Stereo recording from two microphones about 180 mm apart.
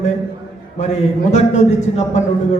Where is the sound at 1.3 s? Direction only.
40° left (ahead or behind).